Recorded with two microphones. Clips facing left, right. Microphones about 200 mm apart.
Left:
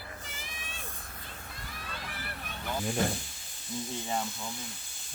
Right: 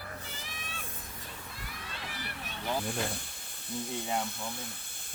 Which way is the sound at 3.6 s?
60° right (ahead or behind).